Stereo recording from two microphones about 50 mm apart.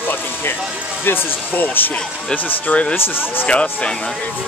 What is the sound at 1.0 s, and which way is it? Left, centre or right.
Speech, left.